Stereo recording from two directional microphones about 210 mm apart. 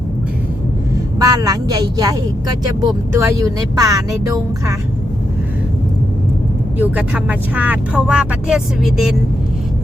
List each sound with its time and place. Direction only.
1.2 s speech: 15° right (ahead or behind)
6.7 s speech: 5° right (ahead or behind)